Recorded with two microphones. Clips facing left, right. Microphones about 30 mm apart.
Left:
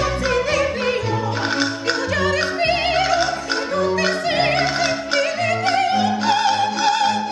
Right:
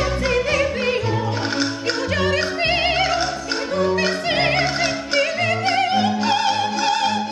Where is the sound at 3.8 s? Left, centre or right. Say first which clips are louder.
Right 1 dB; centre.